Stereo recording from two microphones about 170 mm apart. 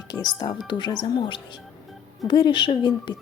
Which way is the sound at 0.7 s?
25° left (ahead or behind).